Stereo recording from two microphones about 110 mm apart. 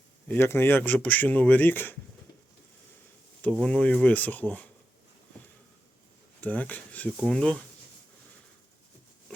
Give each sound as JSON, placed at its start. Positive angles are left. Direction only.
{"t": 0.3, "sound": "speech", "side_deg": 20}
{"t": 3.6, "sound": "speech", "side_deg": 10}
{"t": 6.4, "sound": "speech", "side_deg": 15}